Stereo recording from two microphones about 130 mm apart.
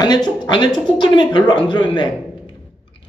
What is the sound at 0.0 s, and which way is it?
Speech, 30° left (ahead or behind).